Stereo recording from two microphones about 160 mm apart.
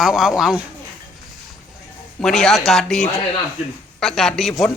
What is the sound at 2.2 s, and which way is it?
Speech, centre (ahead or behind).